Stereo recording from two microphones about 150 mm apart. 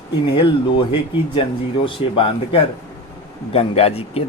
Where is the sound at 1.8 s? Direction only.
35° left (ahead or behind).